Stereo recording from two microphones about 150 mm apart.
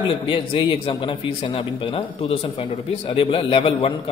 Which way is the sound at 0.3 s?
35° left (ahead or behind).